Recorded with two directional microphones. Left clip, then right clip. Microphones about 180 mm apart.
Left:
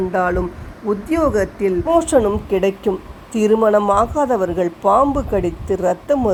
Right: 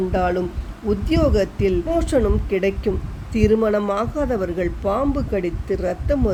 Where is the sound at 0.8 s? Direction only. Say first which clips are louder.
Left 2 dB; 10° right (ahead or behind).